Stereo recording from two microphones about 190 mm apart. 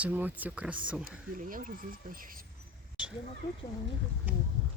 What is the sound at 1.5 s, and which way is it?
Speech, 45° right (ahead or behind).